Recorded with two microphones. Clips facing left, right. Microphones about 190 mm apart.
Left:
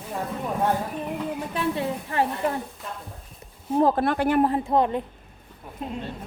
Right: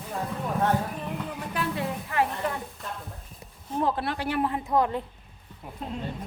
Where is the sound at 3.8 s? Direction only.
45° left (ahead or behind).